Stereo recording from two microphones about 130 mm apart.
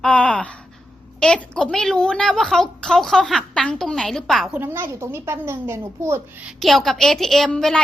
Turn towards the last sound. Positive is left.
turn(degrees=5)  # may be behind; listen again after turning